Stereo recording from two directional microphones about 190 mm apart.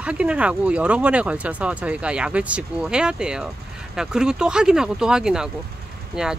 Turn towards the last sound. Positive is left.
turn(degrees=-5)  # may be behind; listen again after turning